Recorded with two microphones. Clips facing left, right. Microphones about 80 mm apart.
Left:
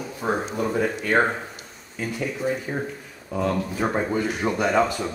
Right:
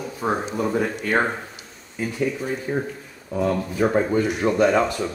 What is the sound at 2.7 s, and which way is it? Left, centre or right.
Speech, centre.